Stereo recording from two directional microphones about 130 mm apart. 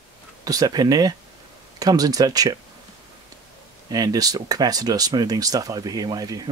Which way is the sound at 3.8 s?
30° right (ahead or behind).